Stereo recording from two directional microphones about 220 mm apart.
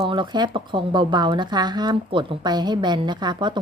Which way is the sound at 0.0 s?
20° right (ahead or behind).